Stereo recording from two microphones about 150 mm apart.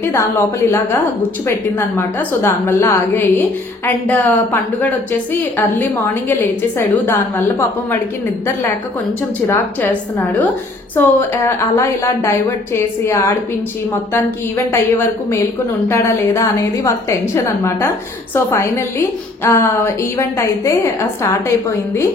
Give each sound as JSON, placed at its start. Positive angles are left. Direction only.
{"t": 0.0, "sound": "a woman's voice", "side_deg": 15}
{"t": 9.5, "sound": "a woman's voice", "side_deg": 10}
{"t": 14.7, "sound": "a woman's voice", "side_deg": 15}